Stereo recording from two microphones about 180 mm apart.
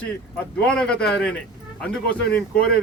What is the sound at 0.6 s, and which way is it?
Speech, 5° left (ahead or behind).